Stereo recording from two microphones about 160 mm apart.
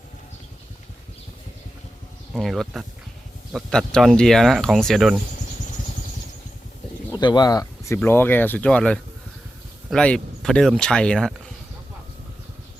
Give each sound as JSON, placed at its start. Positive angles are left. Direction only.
{"t": 2.3, "sound": "speech", "side_deg": 0}
{"t": 7.1, "sound": "speech", "side_deg": 25}